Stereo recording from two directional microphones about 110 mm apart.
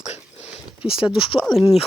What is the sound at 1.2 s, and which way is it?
Speech, 50° left (ahead or behind).